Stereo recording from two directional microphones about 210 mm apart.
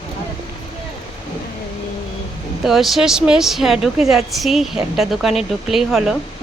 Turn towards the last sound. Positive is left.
turn(degrees=0)  # may be behind; listen again after turning